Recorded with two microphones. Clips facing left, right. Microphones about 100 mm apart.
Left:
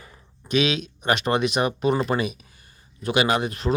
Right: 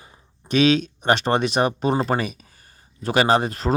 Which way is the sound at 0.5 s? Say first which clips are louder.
Right 5 dB; 35° right (ahead or behind).